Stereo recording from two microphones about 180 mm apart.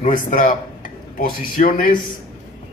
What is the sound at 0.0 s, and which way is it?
A man's voice, 45° left (ahead or behind).